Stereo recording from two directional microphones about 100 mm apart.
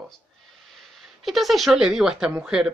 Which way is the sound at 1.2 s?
Centre (ahead or behind).